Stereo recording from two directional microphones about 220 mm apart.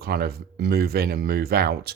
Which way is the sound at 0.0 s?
45° right (ahead or behind).